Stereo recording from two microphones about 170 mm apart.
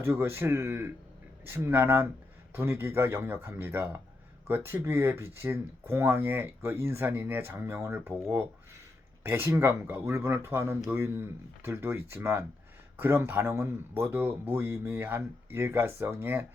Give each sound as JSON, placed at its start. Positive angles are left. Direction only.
{"t": 0.0, "sound": "speech", "side_deg": -15}